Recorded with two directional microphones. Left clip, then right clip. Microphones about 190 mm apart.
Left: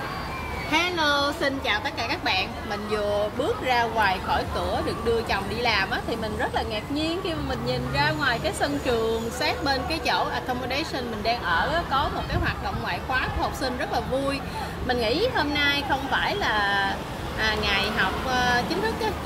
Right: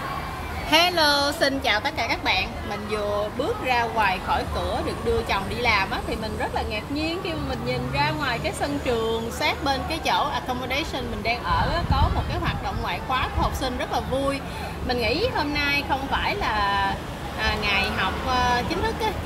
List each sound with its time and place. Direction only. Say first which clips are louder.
0.7 s a woman's voice: right 4 dB; 55° right (ahead or behind); by 1.8 s 40° right (ahead or behind)
2.0 s speech: right 2 dB; 10° right (ahead or behind)
3.6 s a woman's voice: right 1 dB; 5° right (ahead or behind)
13.1 s a woman's voice: right 1 dB; 5° right (ahead or behind)
14.9 s a woman's voice: even; centre (ahead or behind)